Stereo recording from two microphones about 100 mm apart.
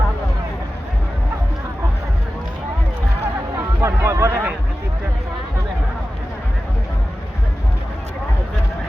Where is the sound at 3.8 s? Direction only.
30° right (ahead or behind).